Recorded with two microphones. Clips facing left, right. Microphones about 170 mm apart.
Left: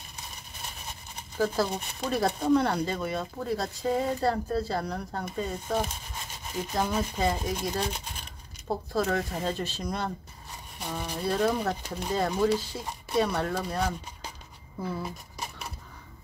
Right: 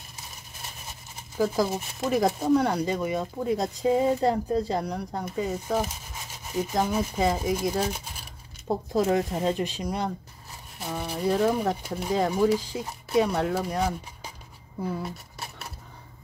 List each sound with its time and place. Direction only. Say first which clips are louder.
1.4 s speech: right 2 dB; 10° right (ahead or behind)
8.9 s speech: right 5 dB; 20° right (ahead or behind)
15.3 s a sound: left 1 dB; centre (ahead or behind)